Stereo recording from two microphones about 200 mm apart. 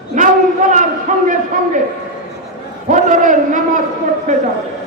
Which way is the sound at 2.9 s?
40° right (ahead or behind).